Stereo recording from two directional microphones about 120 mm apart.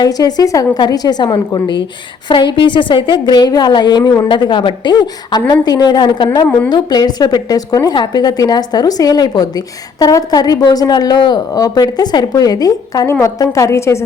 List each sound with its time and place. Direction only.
0.0 s a woman's voice: 35° left (ahead or behind)